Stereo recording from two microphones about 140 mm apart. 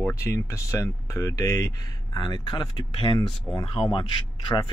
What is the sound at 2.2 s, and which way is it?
Speech, 35° left (ahead or behind).